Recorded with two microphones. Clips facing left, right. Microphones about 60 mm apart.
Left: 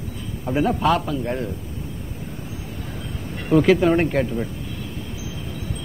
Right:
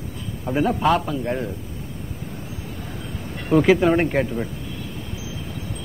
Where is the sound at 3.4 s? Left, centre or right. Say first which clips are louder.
Even; centre.